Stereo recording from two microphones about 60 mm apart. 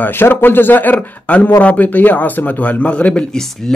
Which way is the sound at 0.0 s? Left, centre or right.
Left.